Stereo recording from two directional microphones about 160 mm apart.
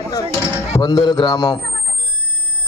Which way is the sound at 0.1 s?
20° left (ahead or behind).